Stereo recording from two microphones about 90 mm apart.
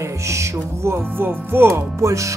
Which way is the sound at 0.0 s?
35° right (ahead or behind).